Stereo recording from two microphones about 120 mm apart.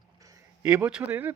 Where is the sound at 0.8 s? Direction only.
10° right (ahead or behind).